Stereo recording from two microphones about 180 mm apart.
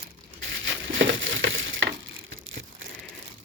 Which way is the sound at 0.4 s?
90° right.